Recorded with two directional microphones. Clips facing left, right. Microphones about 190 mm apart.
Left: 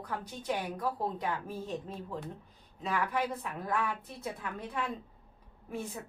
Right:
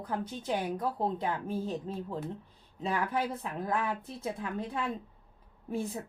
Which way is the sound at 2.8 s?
30° right (ahead or behind).